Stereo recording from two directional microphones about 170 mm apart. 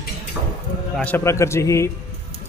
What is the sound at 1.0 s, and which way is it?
Speech, 10° left (ahead or behind).